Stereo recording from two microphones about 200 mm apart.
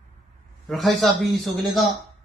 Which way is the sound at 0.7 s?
Centre (ahead or behind).